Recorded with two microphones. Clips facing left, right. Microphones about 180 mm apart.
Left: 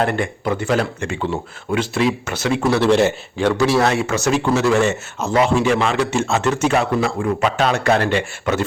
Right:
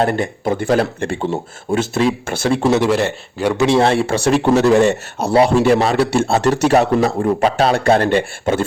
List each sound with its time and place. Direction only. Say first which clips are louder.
0.0 s speech: right 2 dB; 35° right (ahead or behind)
1.7 s speech: right 2 dB; 45° right (ahead or behind)
2.6 s speech: right 3 dB; 25° right (ahead or behind)
2.8 s a man's voice: left 2 dB; 5° right (ahead or behind)
3.5 s speech: right 4 dB; 20° right (ahead or behind); by 8.2 s 40° right (ahead or behind)
8.5 s speech: right 2 dB; 30° right (ahead or behind)